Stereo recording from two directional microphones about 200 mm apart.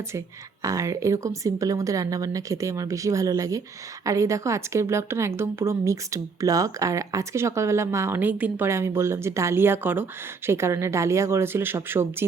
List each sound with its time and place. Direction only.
0.6 s speech: 15° right (ahead or behind)